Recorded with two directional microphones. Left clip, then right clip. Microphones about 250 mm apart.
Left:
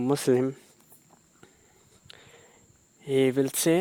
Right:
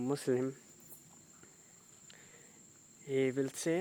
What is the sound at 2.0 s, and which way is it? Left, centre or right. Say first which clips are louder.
Cricket: left 9 dB; left.